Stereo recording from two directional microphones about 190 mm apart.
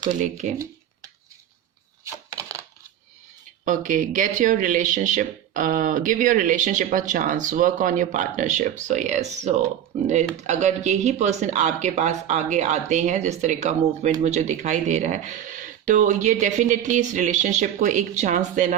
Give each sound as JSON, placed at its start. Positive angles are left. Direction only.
{"t": 0.1, "sound": "speech", "side_deg": -40}
{"t": 2.3, "sound": "a sound", "side_deg": -15}
{"t": 3.7, "sound": "speech", "side_deg": -40}